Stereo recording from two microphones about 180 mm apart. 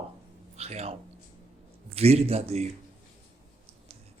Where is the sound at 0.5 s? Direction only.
35° right (ahead or behind).